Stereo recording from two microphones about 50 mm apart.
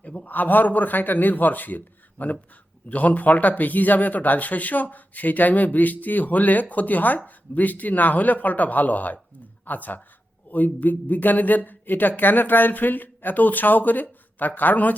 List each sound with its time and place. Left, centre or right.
0.0 s speech: left